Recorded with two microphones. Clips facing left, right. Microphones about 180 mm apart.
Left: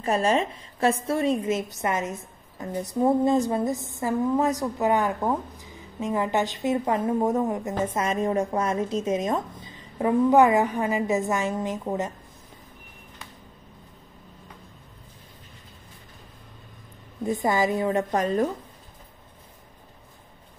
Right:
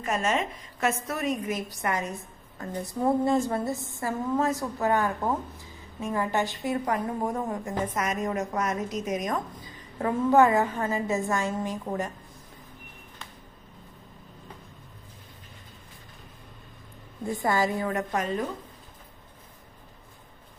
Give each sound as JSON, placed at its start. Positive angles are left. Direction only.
{"t": 0.0, "sound": "a woman's voice", "side_deg": 35}
{"t": 17.2, "sound": "a woman's voice", "side_deg": 20}
{"t": 18.1, "sound": "speech", "side_deg": 40}